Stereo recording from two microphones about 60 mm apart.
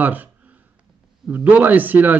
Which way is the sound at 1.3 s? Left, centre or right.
Right.